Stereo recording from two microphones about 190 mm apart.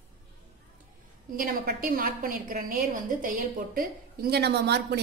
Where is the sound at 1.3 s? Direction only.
50° right (ahead or behind).